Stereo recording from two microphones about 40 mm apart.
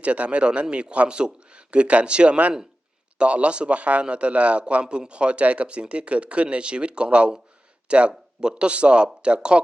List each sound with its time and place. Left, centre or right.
0.0 s a man's voice: right